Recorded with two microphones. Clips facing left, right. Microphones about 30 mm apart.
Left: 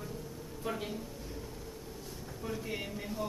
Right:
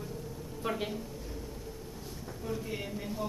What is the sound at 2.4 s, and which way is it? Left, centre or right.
Speech, centre.